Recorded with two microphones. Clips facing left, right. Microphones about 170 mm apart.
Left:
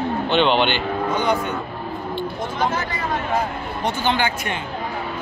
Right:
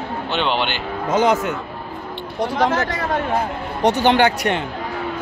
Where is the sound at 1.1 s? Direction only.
90° right.